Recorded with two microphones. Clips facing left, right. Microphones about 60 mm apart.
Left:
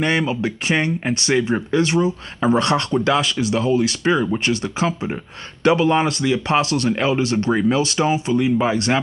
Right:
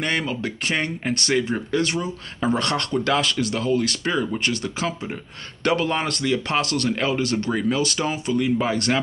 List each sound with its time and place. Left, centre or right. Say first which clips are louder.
0.0 s speech: left 5 dB; centre